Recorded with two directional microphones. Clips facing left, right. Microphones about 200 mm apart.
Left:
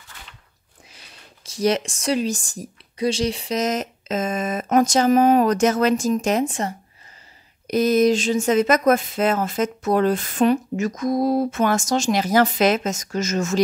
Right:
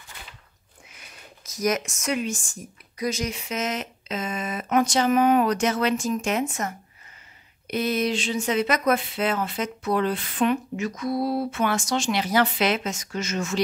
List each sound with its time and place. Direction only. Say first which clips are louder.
0.8 s speech: right 1 dB; 30° left (ahead or behind)